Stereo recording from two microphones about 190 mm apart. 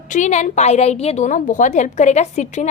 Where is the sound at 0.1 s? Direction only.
40° left (ahead or behind).